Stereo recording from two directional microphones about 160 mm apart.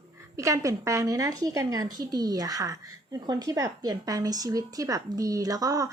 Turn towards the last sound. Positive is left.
turn(degrees=-20)  # may be behind; listen again after turning